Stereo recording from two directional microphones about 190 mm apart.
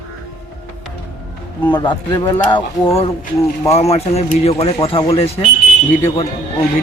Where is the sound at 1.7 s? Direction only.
25° left (ahead or behind).